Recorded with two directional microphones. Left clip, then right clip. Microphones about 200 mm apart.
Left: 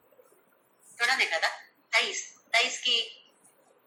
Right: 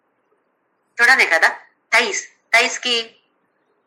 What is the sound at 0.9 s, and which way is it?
A woman's voice, 50° right (ahead or behind).